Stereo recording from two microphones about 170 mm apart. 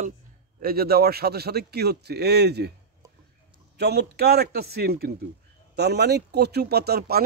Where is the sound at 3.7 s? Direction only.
75° right (ahead or behind).